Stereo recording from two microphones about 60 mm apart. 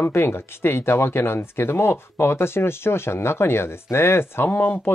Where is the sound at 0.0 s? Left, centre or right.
Left.